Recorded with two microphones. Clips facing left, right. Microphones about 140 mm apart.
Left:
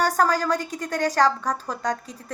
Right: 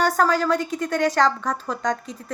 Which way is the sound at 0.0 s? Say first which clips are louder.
Right 2 dB; 40° left (ahead or behind).